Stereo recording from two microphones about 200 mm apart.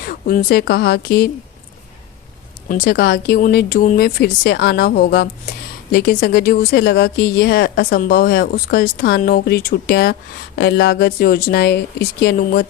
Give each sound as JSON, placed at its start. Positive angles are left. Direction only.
{"t": 0.0, "sound": "speech", "side_deg": 45}
{"t": 2.8, "sound": "speech", "side_deg": 55}